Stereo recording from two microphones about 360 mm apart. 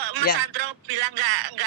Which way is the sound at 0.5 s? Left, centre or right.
Right.